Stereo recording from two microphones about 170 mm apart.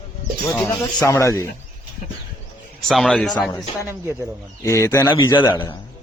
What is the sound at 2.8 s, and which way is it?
Speech, centre (ahead or behind).